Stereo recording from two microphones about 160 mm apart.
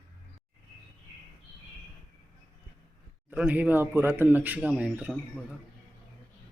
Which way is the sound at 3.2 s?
10° right (ahead or behind).